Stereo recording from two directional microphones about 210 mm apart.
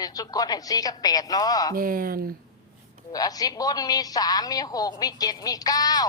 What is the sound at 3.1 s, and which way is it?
A woman's voice, 15° left (ahead or behind).